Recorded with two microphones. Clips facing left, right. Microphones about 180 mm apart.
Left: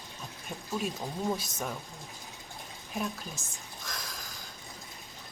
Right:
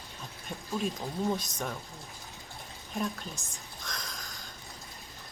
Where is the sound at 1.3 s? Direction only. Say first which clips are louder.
Right 1 dB; 5° left (ahead or behind).